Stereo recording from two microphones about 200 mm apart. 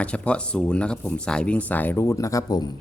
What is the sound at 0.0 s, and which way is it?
Speech, 5° left (ahead or behind).